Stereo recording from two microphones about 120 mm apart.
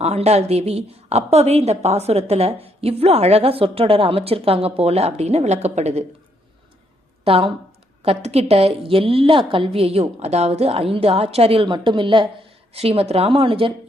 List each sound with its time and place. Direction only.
0.0 s a woman's voice: 60° right (ahead or behind)
7.3 s a woman's voice: 55° right (ahead or behind)
12.7 s a woman's voice: 55° right (ahead or behind)